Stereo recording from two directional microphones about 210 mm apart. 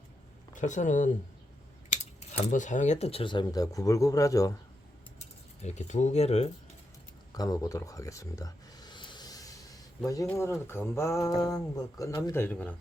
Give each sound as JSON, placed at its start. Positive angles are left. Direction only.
{"t": 0.5, "sound": "speech", "side_deg": 35}
{"t": 5.6, "sound": "speech", "side_deg": 35}
{"t": 7.3, "sound": "speech", "side_deg": 15}